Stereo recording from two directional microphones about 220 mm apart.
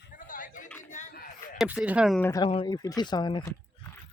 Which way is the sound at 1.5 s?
5° right (ahead or behind).